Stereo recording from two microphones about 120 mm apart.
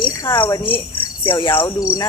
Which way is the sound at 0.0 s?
45° left (ahead or behind).